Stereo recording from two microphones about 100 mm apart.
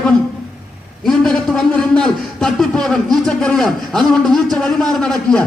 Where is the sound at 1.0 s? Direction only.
5° left (ahead or behind).